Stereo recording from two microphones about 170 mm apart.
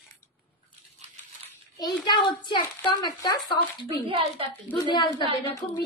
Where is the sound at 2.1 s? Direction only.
25° left (ahead or behind).